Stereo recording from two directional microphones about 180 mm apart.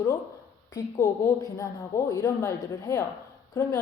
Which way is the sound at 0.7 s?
20° left (ahead or behind).